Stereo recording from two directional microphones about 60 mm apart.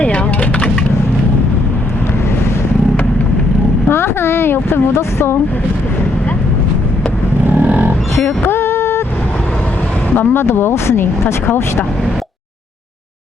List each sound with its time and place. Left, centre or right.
3.8 s a sound: left
7.4 s vehicle: right
8.1 s music: left
10.2 s speech: left